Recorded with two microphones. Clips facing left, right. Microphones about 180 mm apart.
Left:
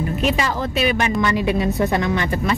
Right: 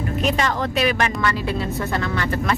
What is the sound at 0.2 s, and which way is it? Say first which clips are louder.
Speech: right 1 dB; 5° left (ahead or behind).